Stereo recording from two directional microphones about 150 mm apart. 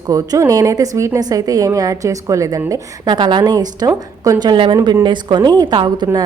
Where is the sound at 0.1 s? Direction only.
25° right (ahead or behind).